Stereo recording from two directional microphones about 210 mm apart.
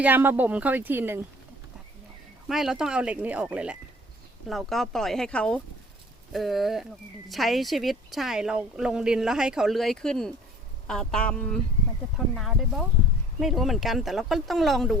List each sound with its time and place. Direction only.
0.0 s speech: 10° right (ahead or behind)
2.5 s speech: centre (ahead or behind)